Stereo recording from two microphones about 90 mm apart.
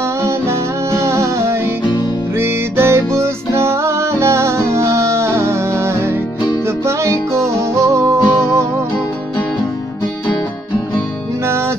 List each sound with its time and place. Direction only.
0.2 s music: 30° right (ahead or behind)